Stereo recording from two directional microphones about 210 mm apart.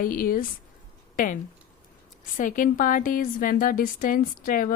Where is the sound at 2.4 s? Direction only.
40° left (ahead or behind).